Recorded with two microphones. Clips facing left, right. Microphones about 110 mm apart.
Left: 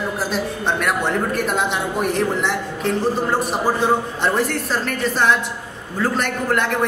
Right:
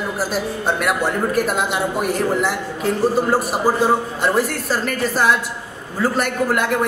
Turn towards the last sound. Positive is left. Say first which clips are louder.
# right 1 dB
turn(degrees=-5)  # may be behind; listen again after turning